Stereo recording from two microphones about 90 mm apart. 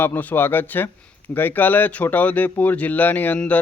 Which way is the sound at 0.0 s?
20° left (ahead or behind).